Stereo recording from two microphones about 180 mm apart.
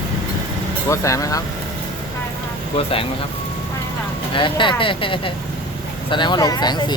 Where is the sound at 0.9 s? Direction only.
20° left (ahead or behind).